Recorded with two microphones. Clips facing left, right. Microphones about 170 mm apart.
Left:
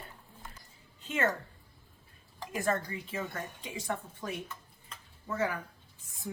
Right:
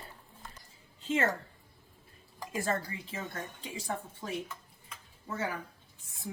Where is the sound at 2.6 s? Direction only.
30° right (ahead or behind).